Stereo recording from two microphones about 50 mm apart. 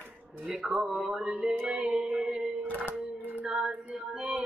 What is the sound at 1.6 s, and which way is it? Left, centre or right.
Music, right.